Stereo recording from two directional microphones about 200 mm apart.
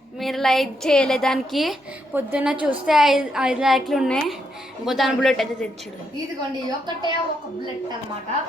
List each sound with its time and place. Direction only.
0.2 s a woman's voice: centre (ahead or behind)
6.7 s a woman's voice: 20° right (ahead or behind)